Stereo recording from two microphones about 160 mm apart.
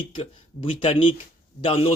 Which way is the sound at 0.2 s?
30° left (ahead or behind).